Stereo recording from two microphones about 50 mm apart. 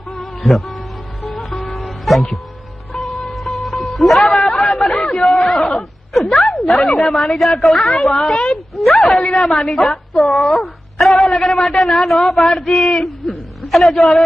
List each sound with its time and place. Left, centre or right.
0.2 s music: centre
4.4 s chatter: centre
5.4 s a sound: centre
6.7 s a woman's voice: centre
8.7 s a woman's voice: centre
13.0 s a man's voice: centre